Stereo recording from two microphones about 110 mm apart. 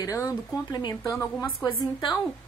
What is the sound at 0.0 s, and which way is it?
Speech, 30° left (ahead or behind).